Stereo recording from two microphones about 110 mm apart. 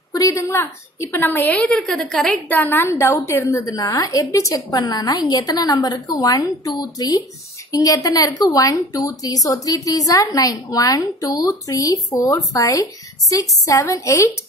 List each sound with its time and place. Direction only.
0.4 s a woman's voice: 25° left (ahead or behind)
1.8 s a woman's voice: centre (ahead or behind)
2.4 s a woman's voice: 15° left (ahead or behind)
4.6 s a woman's voice: 40° left (ahead or behind)